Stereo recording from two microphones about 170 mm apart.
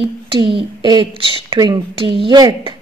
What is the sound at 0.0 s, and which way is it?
A woman's voice, 30° right (ahead or behind).